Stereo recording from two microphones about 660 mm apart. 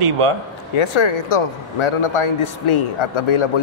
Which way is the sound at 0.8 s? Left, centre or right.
Left.